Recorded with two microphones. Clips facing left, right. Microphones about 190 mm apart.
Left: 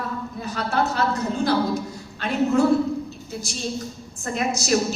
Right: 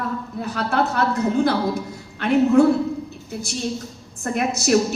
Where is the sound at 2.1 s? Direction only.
60° right (ahead or behind).